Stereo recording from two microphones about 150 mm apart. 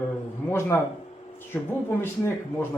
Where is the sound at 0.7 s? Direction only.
15° left (ahead or behind).